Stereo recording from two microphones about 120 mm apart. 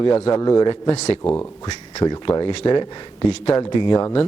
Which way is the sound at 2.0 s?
35° left (ahead or behind).